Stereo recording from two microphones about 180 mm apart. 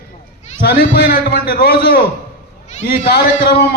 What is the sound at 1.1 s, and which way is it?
Speech, 60° left (ahead or behind).